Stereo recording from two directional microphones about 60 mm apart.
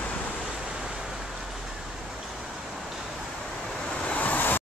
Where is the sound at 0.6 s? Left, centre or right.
Centre.